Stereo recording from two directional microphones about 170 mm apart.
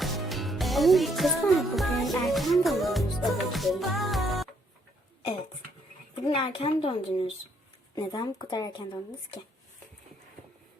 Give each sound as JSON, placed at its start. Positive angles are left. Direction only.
{"t": 0.0, "sound": "music", "side_deg": 0}
{"t": 6.2, "sound": "speech", "side_deg": 30}